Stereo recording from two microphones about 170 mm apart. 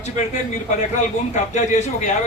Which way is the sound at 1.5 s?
45° left (ahead or behind).